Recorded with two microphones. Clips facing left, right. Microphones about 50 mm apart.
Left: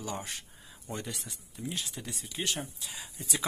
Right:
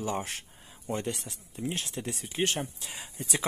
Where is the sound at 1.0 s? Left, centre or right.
Right.